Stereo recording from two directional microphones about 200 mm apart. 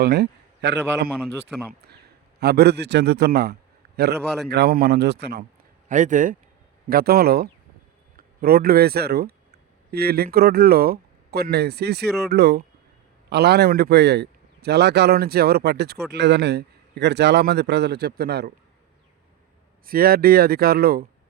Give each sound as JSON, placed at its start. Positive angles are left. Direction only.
{"t": 0.0, "sound": "a man's voice", "side_deg": -55}
{"t": 2.4, "sound": "a man's voice", "side_deg": -55}
{"t": 5.9, "sound": "a man's voice", "side_deg": -40}
{"t": 19.8, "sound": "a man's voice", "side_deg": -45}